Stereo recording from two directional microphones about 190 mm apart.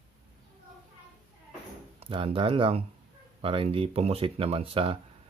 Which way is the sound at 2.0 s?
30° right (ahead or behind).